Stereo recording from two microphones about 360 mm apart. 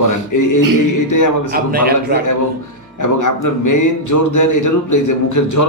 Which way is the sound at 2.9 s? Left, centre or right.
Left.